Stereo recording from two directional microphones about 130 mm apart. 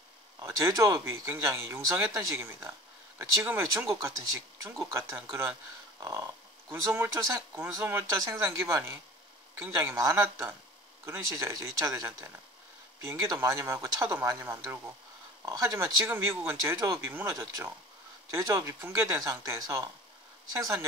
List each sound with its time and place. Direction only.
0.4 s speech: 25° right (ahead or behind)
4.6 s speech: 20° right (ahead or behind)
5.9 s dog: 25° right (ahead or behind)
6.7 s speech: 20° right (ahead or behind)